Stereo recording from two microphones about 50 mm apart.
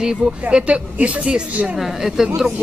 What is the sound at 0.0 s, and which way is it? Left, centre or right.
Speech, centre.